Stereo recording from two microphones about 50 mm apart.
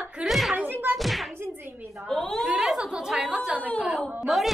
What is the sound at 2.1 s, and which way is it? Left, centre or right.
Speech, centre.